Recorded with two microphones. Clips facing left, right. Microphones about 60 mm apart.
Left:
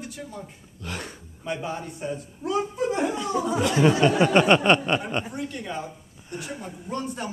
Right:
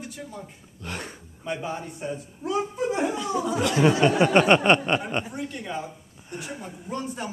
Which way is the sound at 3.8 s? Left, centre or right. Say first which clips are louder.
Even; centre.